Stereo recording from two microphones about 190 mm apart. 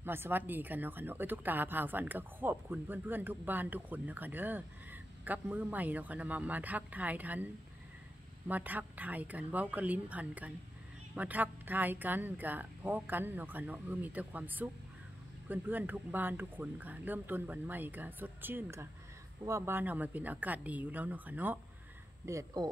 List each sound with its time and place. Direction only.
0.0 s speech: 10° right (ahead or behind)
8.5 s speech: 10° right (ahead or behind)